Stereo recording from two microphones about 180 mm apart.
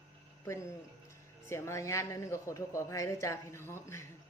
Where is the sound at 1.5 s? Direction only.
15° left (ahead or behind).